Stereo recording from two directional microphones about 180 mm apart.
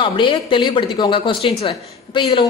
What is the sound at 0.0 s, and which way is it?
A woman's voice, 25° left (ahead or behind).